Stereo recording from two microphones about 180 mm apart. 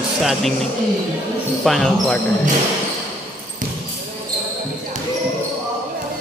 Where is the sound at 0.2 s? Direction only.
Centre (ahead or behind).